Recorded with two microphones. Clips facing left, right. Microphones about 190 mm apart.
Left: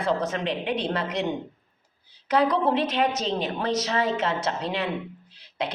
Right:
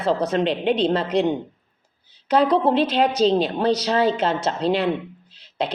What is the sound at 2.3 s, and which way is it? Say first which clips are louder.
Speech: right 4 dB; 30° right (ahead or behind).